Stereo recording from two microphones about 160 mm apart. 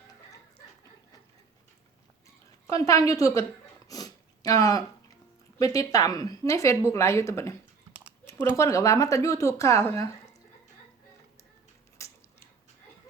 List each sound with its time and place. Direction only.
2.6 s speech: 20° left (ahead or behind)
3.8 s a sound: 25° left (ahead or behind)
5.5 s speech: 20° left (ahead or behind)
7.9 s typing: 10° right (ahead or behind)
8.5 s speech: 20° left (ahead or behind)
12.0 s mechanisms: 20° left (ahead or behind)